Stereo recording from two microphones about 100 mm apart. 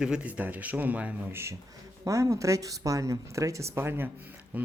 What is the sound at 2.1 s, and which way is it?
Speech, 30° right (ahead or behind).